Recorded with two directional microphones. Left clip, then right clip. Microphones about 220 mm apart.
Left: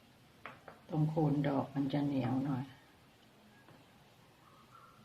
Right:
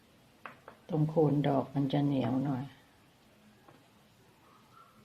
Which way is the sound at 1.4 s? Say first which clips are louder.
Right 4 dB; 40° right (ahead or behind).